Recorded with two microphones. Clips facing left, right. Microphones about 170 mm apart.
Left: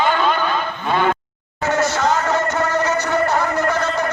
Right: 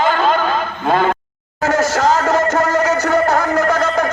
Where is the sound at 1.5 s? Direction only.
90° right.